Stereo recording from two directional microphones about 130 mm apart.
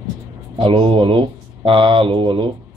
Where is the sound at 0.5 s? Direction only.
40° right (ahead or behind).